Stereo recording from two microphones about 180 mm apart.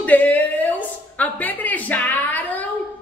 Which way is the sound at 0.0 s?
10° left (ahead or behind).